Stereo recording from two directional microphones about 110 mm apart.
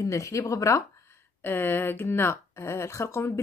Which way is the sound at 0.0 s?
30° left (ahead or behind).